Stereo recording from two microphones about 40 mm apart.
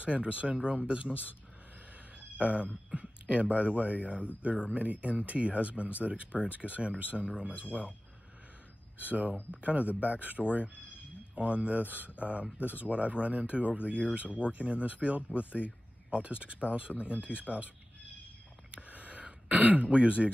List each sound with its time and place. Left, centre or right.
0.0 s speech: right
2.3 s speech: right
7.2 s speech: right
9.0 s speech: right
12.2 s speech: right
18.7 s a sound: right
19.5 s speech: right